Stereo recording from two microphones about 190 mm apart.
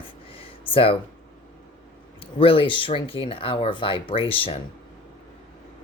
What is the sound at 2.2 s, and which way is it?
Speech, 30° left (ahead or behind).